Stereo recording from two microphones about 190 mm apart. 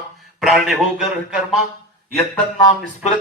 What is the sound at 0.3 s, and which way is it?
Speech, centre (ahead or behind).